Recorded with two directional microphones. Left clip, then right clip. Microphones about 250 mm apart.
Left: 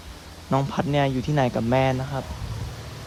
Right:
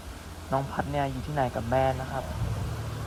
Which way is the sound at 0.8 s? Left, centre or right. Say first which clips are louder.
Left 6 dB; right.